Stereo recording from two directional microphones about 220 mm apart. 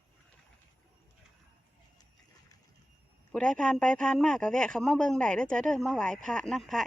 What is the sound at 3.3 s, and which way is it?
Speech, 5° left (ahead or behind).